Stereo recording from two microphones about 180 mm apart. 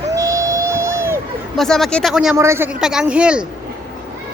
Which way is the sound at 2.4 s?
15° right (ahead or behind).